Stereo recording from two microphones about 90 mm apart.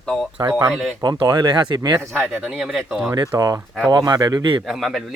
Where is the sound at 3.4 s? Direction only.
40° right (ahead or behind); by 4.6 s 55° right (ahead or behind).